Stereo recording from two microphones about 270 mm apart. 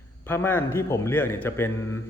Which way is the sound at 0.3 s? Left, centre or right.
Centre.